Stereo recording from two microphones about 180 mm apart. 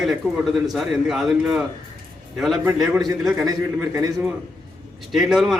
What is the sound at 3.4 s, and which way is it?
Speech, 20° right (ahead or behind).